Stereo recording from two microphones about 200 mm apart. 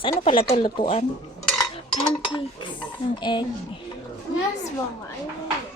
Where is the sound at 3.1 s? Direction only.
20° left (ahead or behind).